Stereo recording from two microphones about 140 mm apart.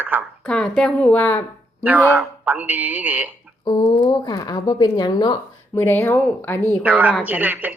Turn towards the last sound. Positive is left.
turn(degrees=-10)  # may be behind; listen again after turning